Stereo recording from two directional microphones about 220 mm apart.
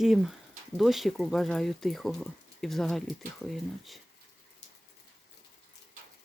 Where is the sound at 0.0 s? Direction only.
Centre (ahead or behind).